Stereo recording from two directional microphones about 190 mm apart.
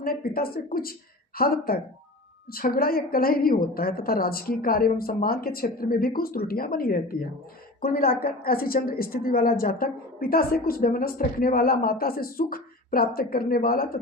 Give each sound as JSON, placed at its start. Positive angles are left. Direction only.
{"t": 0.0, "sound": "a woman's voice", "side_deg": 50}